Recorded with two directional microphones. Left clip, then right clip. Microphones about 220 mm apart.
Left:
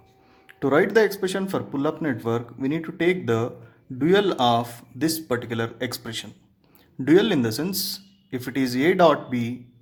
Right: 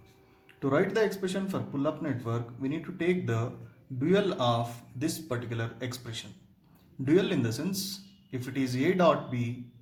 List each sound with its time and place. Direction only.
0.4 s speech: 45° left (ahead or behind)